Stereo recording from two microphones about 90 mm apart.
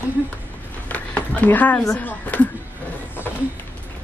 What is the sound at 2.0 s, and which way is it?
Speech, 20° left (ahead or behind).